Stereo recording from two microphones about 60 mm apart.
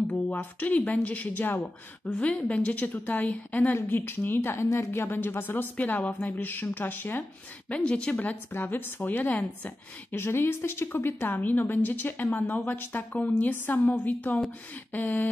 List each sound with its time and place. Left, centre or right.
0.1 s speech: left
3.7 s a woman's voice: left
5.8 s a woman's voice: left
7.7 s a woman's voice: centre
10.1 s a woman's voice: left